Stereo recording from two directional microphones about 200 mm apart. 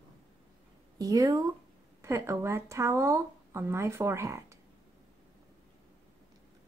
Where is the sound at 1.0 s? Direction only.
15° right (ahead or behind).